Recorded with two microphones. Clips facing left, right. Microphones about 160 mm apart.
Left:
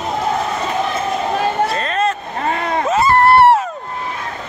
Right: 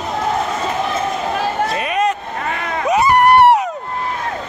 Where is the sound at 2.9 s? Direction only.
15° right (ahead or behind).